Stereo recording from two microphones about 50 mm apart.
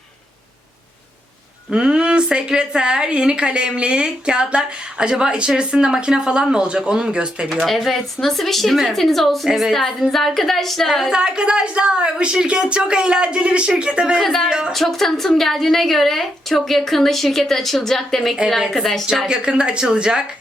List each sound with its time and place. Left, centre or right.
1.7 s a woman's voice: centre
7.7 s a woman's voice: centre
11.1 s a woman's voice: centre
14.2 s a woman's voice: centre
19.3 s a woman's voice: centre